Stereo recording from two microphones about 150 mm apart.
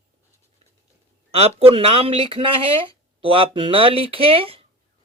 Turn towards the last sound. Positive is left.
turn(degrees=-40)  # may be behind; listen again after turning